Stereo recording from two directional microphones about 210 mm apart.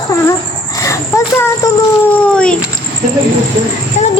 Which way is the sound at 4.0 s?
35° left (ahead or behind).